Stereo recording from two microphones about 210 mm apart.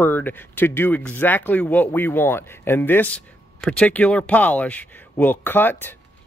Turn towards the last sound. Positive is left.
turn(degrees=10)  # may be behind; listen again after turning